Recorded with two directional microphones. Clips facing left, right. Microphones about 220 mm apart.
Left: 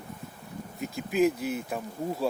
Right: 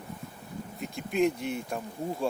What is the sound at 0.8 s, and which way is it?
Speech, centre (ahead or behind).